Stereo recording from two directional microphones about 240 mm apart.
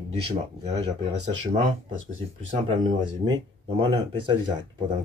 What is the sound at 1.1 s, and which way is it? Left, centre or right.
Speech, right.